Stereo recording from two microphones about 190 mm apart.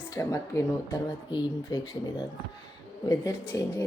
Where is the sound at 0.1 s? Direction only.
15° left (ahead or behind).